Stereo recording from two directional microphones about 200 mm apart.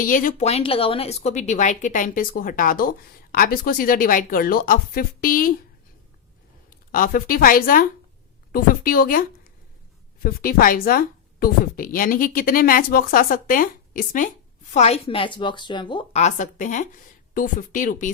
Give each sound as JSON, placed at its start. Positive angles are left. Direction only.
{"t": 0.0, "sound": "speech", "side_deg": 40}
{"t": 6.9, "sound": "speech", "side_deg": 45}
{"t": 10.2, "sound": "speech", "side_deg": 45}
{"t": 14.7, "sound": "a woman's voice", "side_deg": 35}